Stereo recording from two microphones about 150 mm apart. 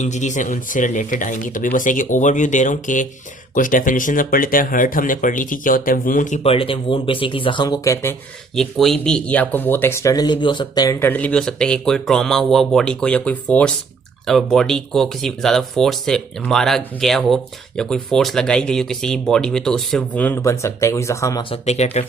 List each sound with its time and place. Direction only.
0.0 s speech: 55° left (ahead or behind)
6.4 s speech: 40° left (ahead or behind); by 8.1 s 25° left (ahead or behind)
8.5 s speech: centre (ahead or behind); by 10.9 s 30° left (ahead or behind)
11.0 s speech: 10° left (ahead or behind)
21.5 s speech: 45° left (ahead or behind)